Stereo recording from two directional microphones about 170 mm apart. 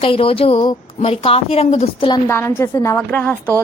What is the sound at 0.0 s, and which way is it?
A woman's voice, 30° left (ahead or behind).